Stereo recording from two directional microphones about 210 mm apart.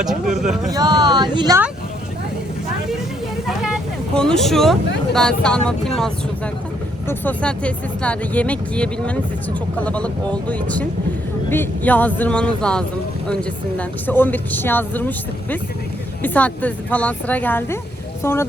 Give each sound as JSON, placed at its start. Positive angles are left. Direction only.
{"t": 0.0, "sound": "speech", "side_deg": 0}
{"t": 0.7, "sound": "speech", "side_deg": -20}
{"t": 3.4, "sound": "vehicle", "side_deg": 0}
{"t": 5.1, "sound": "speech", "side_deg": 5}
{"t": 7.1, "sound": "speech", "side_deg": 5}